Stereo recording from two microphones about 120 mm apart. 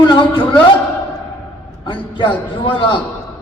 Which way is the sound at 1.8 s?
45° left (ahead or behind).